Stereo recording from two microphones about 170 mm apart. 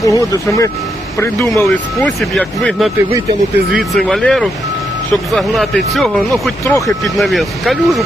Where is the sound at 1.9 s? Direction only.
Centre (ahead or behind).